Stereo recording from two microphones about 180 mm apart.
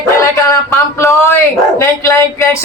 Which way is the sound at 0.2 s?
15° left (ahead or behind).